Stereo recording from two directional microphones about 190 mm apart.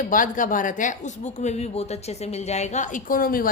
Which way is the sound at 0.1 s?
45° left (ahead or behind).